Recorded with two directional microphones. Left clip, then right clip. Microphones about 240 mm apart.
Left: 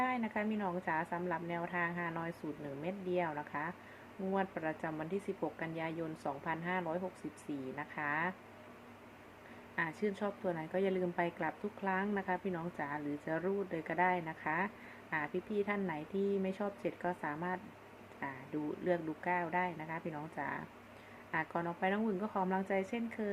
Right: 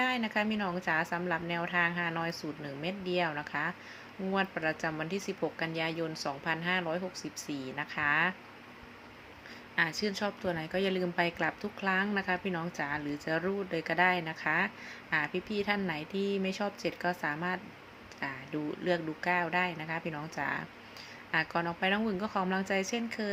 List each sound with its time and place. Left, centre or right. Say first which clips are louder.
0.0 s a woman's voice: right 5 dB; centre
9.7 s a woman's voice: right 6 dB; centre